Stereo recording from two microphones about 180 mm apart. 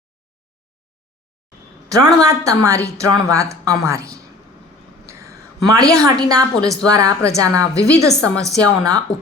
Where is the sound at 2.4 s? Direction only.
15° right (ahead or behind).